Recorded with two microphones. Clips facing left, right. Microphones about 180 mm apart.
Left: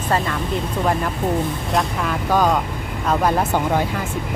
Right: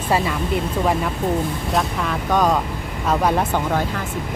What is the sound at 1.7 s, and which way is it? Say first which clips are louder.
Speech: left 1 dB; centre (ahead or behind).